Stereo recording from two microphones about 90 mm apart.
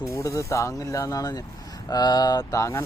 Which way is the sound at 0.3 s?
35° left (ahead or behind).